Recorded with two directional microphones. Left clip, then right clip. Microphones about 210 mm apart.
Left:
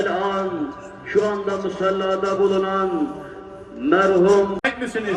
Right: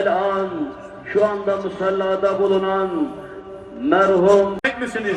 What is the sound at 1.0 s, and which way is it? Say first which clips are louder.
A man's voice: right 2 dB; 10° right (ahead or behind).